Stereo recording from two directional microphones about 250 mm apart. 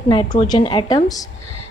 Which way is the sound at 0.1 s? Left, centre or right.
Centre.